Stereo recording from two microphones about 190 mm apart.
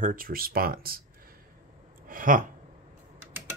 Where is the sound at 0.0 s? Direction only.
45° right (ahead or behind).